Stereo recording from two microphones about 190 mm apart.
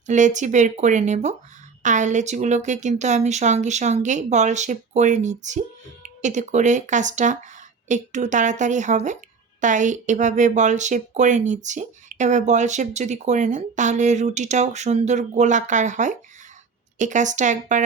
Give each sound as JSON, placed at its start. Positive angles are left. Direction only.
{"t": 0.1, "sound": "speech", "side_deg": -40}